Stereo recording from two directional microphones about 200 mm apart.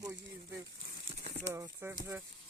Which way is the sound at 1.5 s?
15° right (ahead or behind).